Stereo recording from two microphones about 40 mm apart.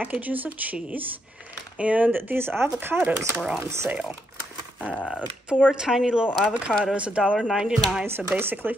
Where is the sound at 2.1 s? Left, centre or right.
Right.